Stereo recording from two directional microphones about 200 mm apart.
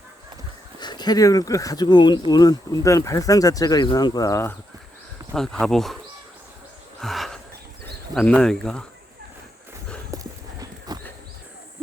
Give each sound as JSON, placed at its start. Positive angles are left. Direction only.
{"t": 0.8, "sound": "speech", "side_deg": 20}
{"t": 5.3, "sound": "speech", "side_deg": 5}
{"t": 7.0, "sound": "a sound", "side_deg": 0}
{"t": 8.1, "sound": "speech", "side_deg": 5}
{"t": 10.1, "sound": "clip-clop", "side_deg": -15}